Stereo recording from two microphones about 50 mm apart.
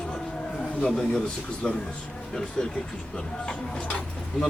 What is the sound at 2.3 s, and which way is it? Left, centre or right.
A man's voice, centre.